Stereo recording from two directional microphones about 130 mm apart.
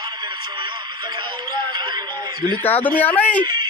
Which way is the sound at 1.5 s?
35° right (ahead or behind).